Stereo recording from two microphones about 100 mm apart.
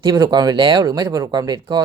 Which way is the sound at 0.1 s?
40° right (ahead or behind).